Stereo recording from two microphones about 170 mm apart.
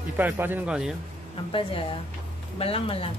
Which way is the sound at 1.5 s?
30° left (ahead or behind).